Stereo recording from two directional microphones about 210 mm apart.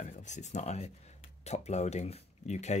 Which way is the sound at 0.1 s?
35° left (ahead or behind).